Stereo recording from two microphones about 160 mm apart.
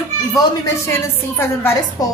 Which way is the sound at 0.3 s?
20° left (ahead or behind).